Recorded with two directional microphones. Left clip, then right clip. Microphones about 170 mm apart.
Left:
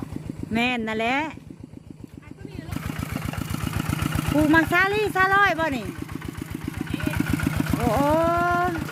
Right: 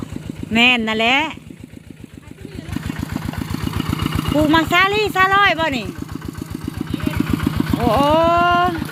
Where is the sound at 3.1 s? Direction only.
30° left (ahead or behind).